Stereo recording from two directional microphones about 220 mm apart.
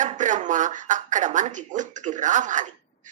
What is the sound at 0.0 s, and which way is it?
A woman's voice, 35° right (ahead or behind).